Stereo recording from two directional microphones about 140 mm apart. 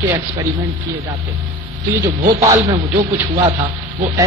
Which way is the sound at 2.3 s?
45° right (ahead or behind).